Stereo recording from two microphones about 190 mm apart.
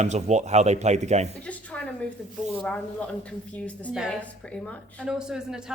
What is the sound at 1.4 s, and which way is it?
Speech, 5° left (ahead or behind).